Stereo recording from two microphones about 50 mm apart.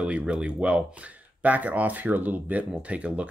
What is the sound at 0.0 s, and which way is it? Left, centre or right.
Speech, right.